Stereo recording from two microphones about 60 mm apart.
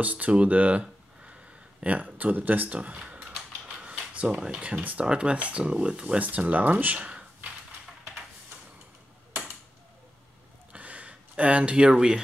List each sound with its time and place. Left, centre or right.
0.0 s speech: right
6.2 s speech: right
10.7 s a sound: right